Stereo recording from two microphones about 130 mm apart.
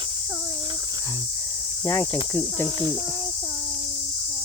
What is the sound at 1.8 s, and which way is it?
Cricket, 20° left (ahead or behind).